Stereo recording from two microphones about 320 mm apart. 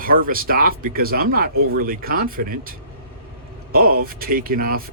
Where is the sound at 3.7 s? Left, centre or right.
Right.